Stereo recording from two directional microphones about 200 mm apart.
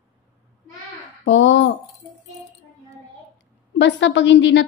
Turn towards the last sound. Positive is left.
turn(degrees=65)  # may be behind; listen again after turning